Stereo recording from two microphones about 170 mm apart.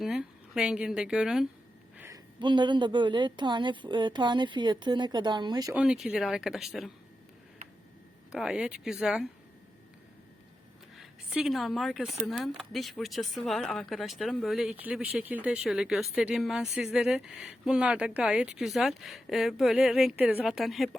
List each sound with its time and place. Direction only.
0.0 s a woman's voice: 5° right (ahead or behind)
2.0 s a woman's voice: 20° right (ahead or behind)
5.7 s speech: 5° right (ahead or behind)
8.3 s speech: 5° right (ahead or behind)
11.0 s speech: centre (ahead or behind)